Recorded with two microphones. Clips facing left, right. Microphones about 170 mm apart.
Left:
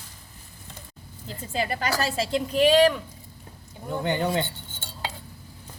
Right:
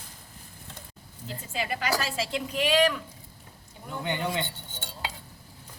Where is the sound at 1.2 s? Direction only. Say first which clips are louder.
Left 4 dB; 40° left (ahead or behind).